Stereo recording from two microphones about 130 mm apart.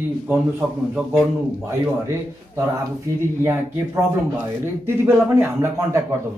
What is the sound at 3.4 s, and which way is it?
Speech, 20° right (ahead or behind).